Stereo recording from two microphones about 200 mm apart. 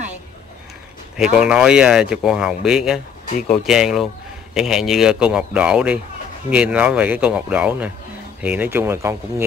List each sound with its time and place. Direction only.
1.3 s speech: 5° right (ahead or behind)